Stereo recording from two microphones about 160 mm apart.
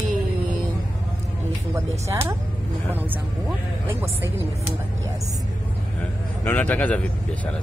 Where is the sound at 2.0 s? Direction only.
15° right (ahead or behind).